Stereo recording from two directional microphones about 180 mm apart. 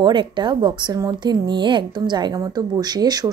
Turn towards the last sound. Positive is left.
turn(degrees=-20)  # may be behind; listen again after turning